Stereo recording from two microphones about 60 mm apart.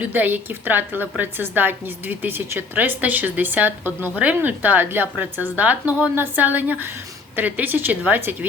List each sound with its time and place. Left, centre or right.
0.0 s a woman's voice: right